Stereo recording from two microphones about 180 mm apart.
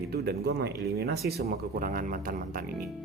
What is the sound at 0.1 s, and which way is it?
A man's voice, 65° right (ahead or behind).